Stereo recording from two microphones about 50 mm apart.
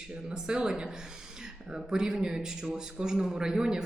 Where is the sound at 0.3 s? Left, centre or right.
Centre.